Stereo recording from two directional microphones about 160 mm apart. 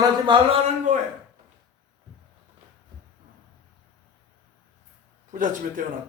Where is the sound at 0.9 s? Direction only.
50° right (ahead or behind).